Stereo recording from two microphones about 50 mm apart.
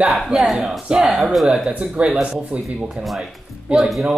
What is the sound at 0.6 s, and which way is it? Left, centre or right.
A woman's voice, centre.